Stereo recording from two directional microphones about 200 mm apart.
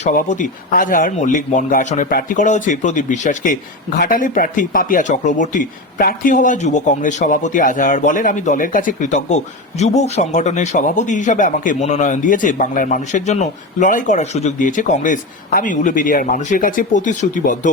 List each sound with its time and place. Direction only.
0.0 s a man's voice: 40° left (ahead or behind)